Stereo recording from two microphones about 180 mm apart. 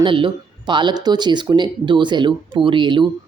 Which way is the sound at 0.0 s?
25° right (ahead or behind).